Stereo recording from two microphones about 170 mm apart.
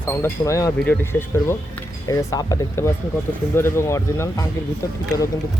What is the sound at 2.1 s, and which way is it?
Speech, 20° left (ahead or behind).